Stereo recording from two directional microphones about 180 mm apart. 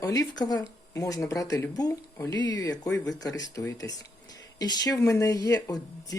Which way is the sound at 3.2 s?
20° left (ahead or behind).